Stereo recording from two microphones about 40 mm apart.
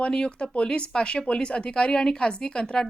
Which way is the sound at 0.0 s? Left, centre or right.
Left.